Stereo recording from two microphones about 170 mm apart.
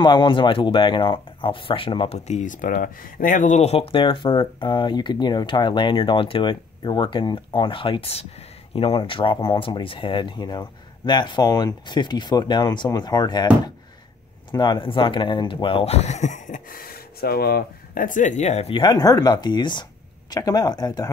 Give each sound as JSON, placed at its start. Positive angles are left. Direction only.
{"t": 0.0, "sound": "speech", "side_deg": 25}